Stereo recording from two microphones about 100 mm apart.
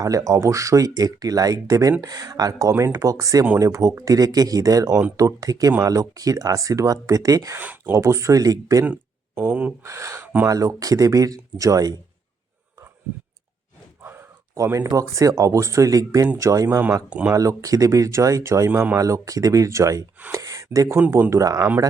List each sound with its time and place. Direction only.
0.0 s speech: 35° right (ahead or behind)
7.5 s speech: 20° right (ahead or behind)
7.9 s speech: 30° right (ahead or behind)
8.8 s speech: 20° right (ahead or behind)
9.8 s speech: 30° right (ahead or behind)
14.0 s speech: 25° right (ahead or behind)
17.1 s speech: 15° right (ahead or behind)
17.3 s speech: 35° right (ahead or behind)
18.7 s speech: 20° right (ahead or behind)
18.9 s speech: 35° right (ahead or behind)